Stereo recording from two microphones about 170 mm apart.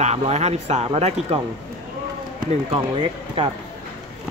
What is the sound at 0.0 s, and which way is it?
Speech, 40° right (ahead or behind).